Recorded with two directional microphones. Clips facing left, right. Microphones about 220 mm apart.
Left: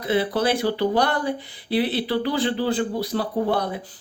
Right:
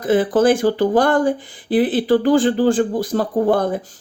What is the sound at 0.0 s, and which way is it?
Speech, 45° right (ahead or behind).